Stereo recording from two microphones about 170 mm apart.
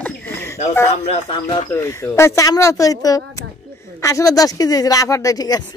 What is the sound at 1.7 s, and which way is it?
Speech, 15° left (ahead or behind).